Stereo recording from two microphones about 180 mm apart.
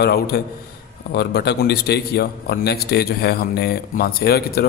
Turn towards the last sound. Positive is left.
turn(degrees=60)  # may be behind; listen again after turning